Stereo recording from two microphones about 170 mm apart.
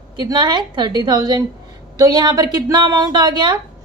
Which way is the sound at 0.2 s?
25° right (ahead or behind).